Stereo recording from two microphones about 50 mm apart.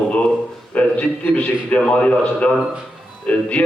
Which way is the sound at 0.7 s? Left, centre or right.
Left.